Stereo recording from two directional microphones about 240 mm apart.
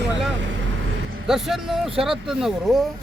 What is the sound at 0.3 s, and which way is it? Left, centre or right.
Vehicle, right.